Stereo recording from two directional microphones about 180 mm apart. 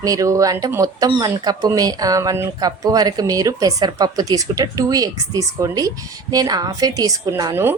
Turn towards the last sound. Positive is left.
turn(degrees=-15)  # may be behind; listen again after turning